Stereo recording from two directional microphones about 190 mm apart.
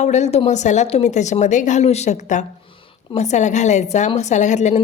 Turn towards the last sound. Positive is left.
turn(degrees=40)  # may be behind; listen again after turning